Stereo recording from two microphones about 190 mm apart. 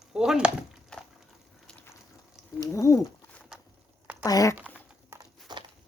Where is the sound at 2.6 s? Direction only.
15° left (ahead or behind).